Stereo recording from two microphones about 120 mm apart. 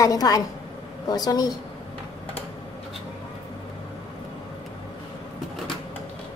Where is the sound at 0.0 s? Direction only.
30° left (ahead or behind).